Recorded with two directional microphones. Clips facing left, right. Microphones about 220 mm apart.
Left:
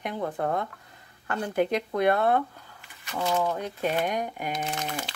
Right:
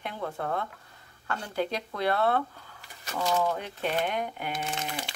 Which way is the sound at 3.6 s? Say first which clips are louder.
Left 3 dB; 40° left (ahead or behind).